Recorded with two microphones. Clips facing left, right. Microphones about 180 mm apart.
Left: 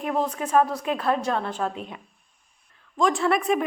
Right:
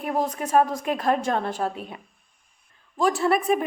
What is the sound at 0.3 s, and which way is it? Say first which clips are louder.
A woman's voice: right 1 dB; 45° right (ahead or behind).